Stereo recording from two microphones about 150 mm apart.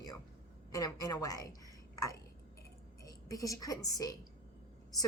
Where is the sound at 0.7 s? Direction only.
25° left (ahead or behind).